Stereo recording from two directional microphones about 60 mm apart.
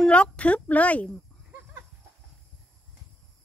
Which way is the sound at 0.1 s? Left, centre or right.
Centre.